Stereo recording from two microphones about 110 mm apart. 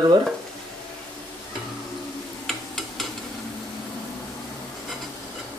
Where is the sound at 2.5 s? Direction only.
Centre (ahead or behind).